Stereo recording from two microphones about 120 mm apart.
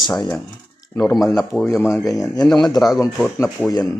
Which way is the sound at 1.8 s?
25° left (ahead or behind).